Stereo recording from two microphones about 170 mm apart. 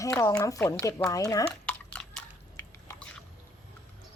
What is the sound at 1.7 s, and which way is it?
Drip, 5° left (ahead or behind).